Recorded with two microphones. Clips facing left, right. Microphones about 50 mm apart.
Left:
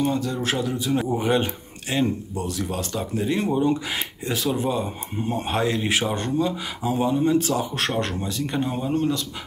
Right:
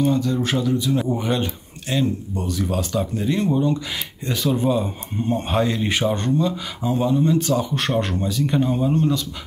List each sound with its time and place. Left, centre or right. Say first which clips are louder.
0.2 s speech: right 3 dB; centre
2.5 s speech: right 7 dB; centre
3.3 s speech: right 1 dB; centre
4.4 s speech: right 4 dB; centre